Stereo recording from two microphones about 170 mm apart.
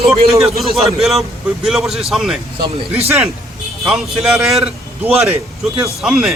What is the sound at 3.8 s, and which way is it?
A man's voice, 5° right (ahead or behind).